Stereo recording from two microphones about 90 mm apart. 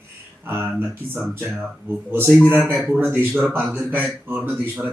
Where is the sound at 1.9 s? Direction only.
25° right (ahead or behind).